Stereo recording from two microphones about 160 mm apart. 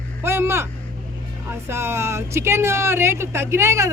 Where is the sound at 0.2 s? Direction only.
15° right (ahead or behind).